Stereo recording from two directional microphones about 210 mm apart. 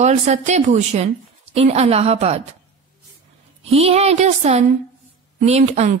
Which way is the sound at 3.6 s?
30° right (ahead or behind).